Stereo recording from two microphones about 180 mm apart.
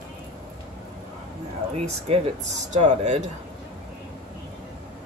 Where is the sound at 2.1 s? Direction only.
35° right (ahead or behind).